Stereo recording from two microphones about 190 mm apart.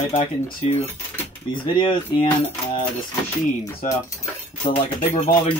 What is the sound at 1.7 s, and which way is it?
Speech, 25° left (ahead or behind).